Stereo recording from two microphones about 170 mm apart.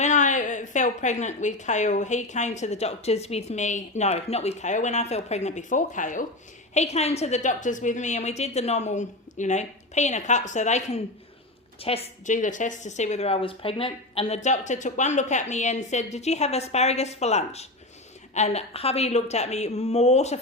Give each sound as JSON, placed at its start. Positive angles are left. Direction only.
{"t": 0.0, "sound": "a woman's voice", "side_deg": 45}